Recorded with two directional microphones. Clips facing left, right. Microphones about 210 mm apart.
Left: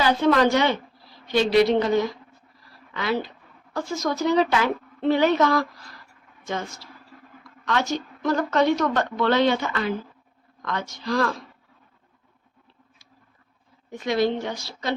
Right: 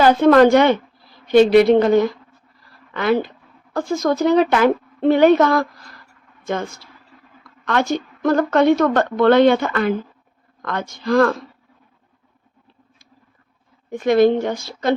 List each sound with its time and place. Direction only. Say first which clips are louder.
0.0 s a woman's voice: right 8 dB; 50° right (ahead or behind)
13.9 s a woman's voice: right 9 dB; 50° right (ahead or behind)